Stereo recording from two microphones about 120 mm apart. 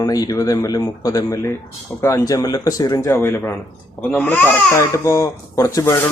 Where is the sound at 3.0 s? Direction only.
20° left (ahead or behind).